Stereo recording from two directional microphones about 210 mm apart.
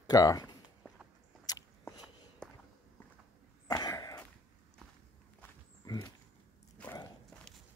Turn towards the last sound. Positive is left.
turn(degrees=10)  # may be behind; listen again after turning